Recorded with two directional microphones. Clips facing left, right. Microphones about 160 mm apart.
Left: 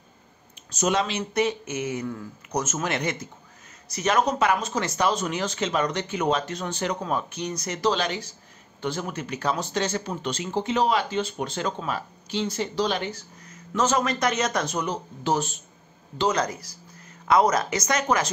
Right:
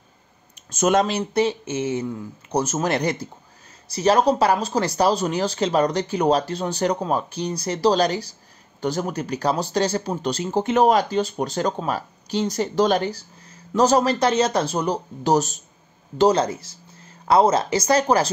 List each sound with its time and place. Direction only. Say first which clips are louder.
0.7 s speech: right 6 dB; 50° right (ahead or behind); by 2.6 s 25° right (ahead or behind)
2.6 s speech: right 6 dB; 35° right (ahead or behind)
10.6 s speech: right 6 dB; 50° right (ahead or behind); by 18.3 s 30° right (ahead or behind)